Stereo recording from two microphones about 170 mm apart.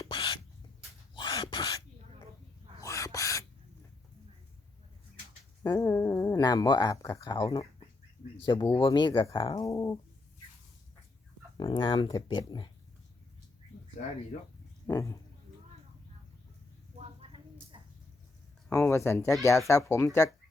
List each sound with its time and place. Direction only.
0.0 s rodents: 25° left (ahead or behind)
1.1 s a sound: 25° left (ahead or behind)
2.8 s bird: 20° left (ahead or behind)
5.6 s speech: 15° left (ahead or behind)
11.5 s speech: 30° left (ahead or behind)
14.8 s speech: 20° left (ahead or behind)
17.0 s a sound: 35° right (ahead or behind)
18.7 s speech: 15° left (ahead or behind)